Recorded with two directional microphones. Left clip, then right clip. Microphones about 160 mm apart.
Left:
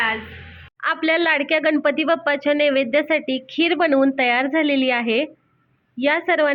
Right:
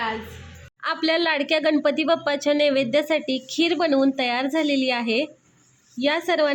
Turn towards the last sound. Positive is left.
turn(degrees=-15)  # may be behind; listen again after turning